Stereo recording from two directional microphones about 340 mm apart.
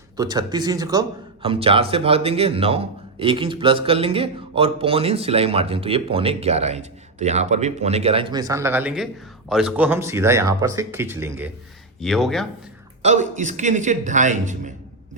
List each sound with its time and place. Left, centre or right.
0.2 s speech: centre
13.0 s a man's voice: right